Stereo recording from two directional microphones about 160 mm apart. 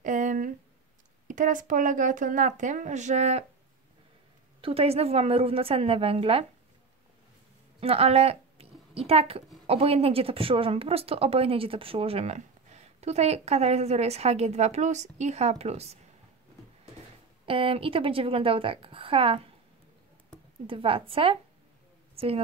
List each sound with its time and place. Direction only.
0.0 s a sound: 50° right (ahead or behind)
1.2 s speech: 55° right (ahead or behind)
4.6 s speech: 35° right (ahead or behind)
7.8 s speech: 40° right (ahead or behind)
17.5 s speech: 35° right (ahead or behind)
20.6 s a woman's voice: 35° right (ahead or behind)